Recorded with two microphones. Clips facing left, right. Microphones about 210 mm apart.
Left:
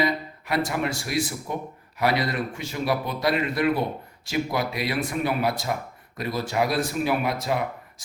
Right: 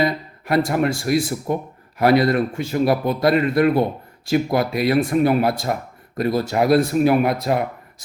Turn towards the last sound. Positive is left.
turn(degrees=-55)  # may be behind; listen again after turning